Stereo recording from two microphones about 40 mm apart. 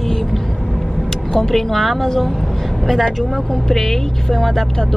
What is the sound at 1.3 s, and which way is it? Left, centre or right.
Speech, centre.